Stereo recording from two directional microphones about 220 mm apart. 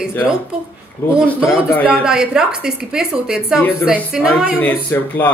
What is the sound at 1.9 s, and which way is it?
A woman's voice, 5° right (ahead or behind).